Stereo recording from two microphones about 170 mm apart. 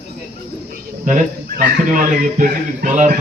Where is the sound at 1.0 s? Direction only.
50° right (ahead or behind).